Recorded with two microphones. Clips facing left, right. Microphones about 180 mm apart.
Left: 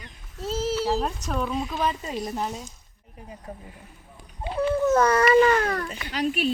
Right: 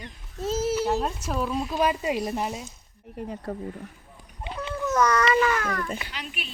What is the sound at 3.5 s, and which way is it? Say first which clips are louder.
Speech: right 6 dB; 80° right.